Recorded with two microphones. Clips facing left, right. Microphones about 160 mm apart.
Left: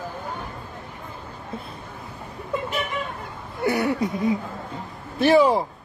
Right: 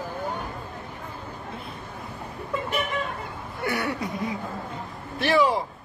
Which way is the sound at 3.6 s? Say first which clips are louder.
Left 6 dB; 25° left (ahead or behind).